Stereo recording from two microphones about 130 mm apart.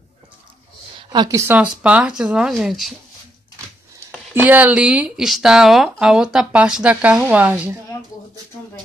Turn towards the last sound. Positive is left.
turn(degrees=-15)  # may be behind; listen again after turning